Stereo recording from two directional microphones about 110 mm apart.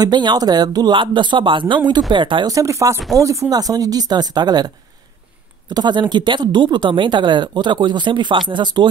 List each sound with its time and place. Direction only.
0.0 s speech: 40° right (ahead or behind)
2.5 s speech: 30° right (ahead or behind); by 8.8 s 45° right (ahead or behind)